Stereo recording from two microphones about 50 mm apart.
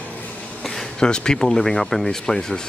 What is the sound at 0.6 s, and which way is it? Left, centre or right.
Speech, centre.